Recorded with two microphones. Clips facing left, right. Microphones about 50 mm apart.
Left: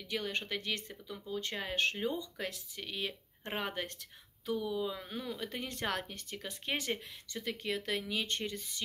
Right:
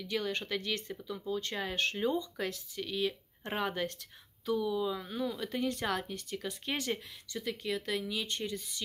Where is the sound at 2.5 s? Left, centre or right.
Left.